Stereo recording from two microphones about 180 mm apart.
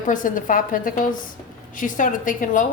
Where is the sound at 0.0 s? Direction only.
45° left (ahead or behind).